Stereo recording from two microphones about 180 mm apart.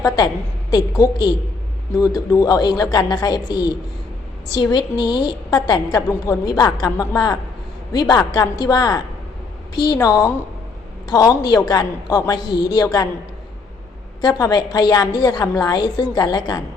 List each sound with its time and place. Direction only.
0.7 s a woman's voice: 20° left (ahead or behind)
4.7 s a woman's voice: 25° left (ahead or behind)
14.2 s a woman's voice: 20° left (ahead or behind)